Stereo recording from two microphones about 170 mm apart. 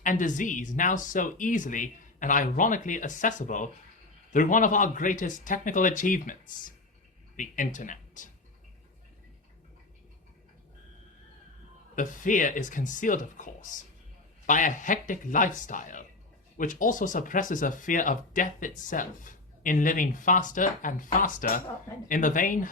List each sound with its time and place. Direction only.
0.0 s speech: 50° left (ahead or behind)
11.9 s speech: 50° left (ahead or behind)